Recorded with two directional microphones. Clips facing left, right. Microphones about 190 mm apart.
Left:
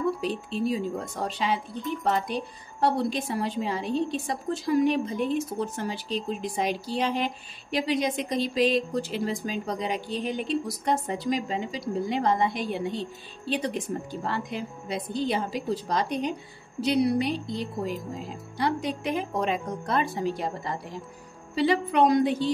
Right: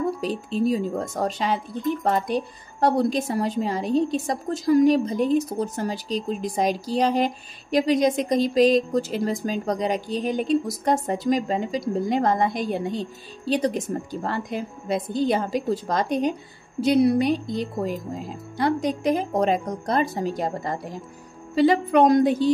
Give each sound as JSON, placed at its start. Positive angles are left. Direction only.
{"t": 0.2, "sound": "a woman's voice", "side_deg": -40}